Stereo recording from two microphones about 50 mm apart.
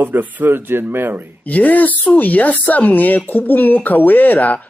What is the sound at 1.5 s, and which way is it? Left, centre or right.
Speech, left.